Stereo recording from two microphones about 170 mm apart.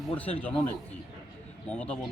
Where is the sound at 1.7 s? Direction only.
10° left (ahead or behind).